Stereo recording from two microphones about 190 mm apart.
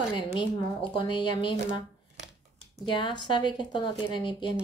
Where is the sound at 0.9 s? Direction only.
25° left (ahead or behind).